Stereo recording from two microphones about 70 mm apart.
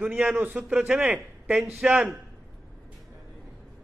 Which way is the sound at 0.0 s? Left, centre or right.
Right.